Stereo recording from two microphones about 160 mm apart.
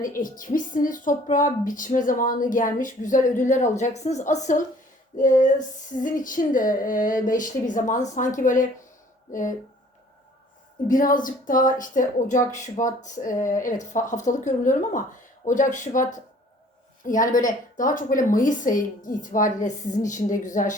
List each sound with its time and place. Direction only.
0.2 s speech: 55° left (ahead or behind)
10.8 s speech: 55° left (ahead or behind)